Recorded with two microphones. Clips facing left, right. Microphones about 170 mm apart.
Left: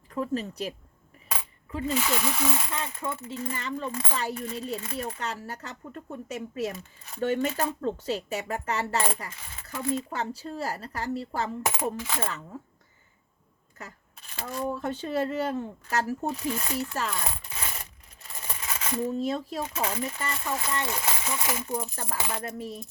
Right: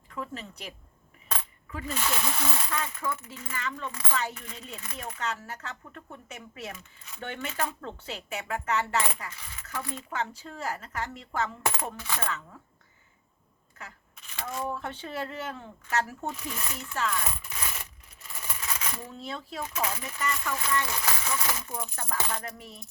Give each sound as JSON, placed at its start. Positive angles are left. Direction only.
{"t": 0.1, "sound": "speech", "side_deg": 40}
{"t": 1.7, "sound": "speech", "side_deg": 25}
{"t": 2.0, "sound": "coin", "side_deg": 5}
{"t": 2.6, "sound": "speech", "side_deg": 25}
{"t": 11.6, "sound": "coin", "side_deg": 15}
{"t": 13.7, "sound": "speech", "side_deg": 40}
{"t": 17.6, "sound": "a sound", "side_deg": 35}
{"t": 19.1, "sound": "speech", "side_deg": 40}
{"t": 21.7, "sound": "speech", "side_deg": 35}
{"t": 22.1, "sound": "coin", "side_deg": 10}
{"t": 22.5, "sound": "speech", "side_deg": 40}